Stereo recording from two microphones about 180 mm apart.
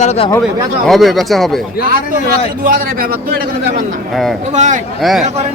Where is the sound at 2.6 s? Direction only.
55° right (ahead or behind).